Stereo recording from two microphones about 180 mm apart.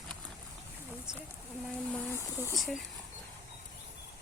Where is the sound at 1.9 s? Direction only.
10° left (ahead or behind).